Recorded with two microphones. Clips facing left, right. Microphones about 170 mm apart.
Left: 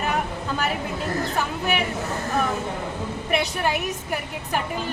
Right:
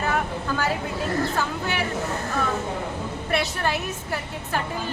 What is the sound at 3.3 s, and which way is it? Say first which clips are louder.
Speech: left 1 dB; 15° left (ahead or behind).